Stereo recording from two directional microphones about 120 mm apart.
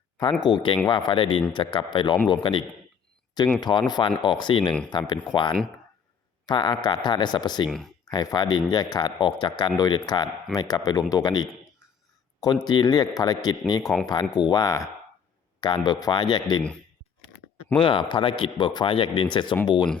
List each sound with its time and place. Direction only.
0.2 s a man's voice: 40° left (ahead or behind)
12.6 s speech: 35° left (ahead or behind)
17.7 s a man's voice: 45° left (ahead or behind)